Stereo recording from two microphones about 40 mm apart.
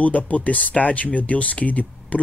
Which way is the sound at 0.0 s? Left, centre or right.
Left.